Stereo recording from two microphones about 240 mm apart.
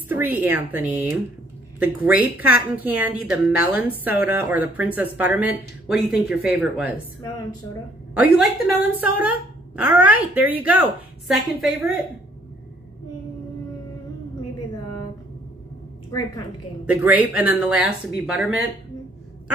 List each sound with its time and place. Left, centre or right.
0.1 s speech: centre
8.2 s a woman's voice: centre
16.1 s a woman's voice: centre
16.8 s speech: centre